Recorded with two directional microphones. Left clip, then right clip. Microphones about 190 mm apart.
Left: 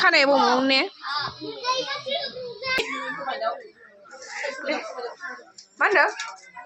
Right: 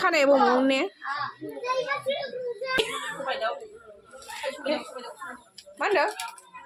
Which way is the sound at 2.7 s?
30° right (ahead or behind).